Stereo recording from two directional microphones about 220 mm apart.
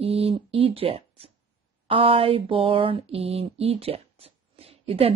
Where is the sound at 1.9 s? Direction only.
25° right (ahead or behind).